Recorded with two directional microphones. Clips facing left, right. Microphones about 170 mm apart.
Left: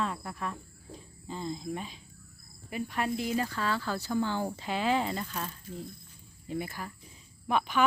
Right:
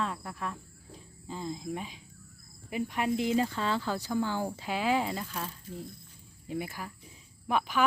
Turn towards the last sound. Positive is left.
turn(degrees=-5)  # may be behind; listen again after turning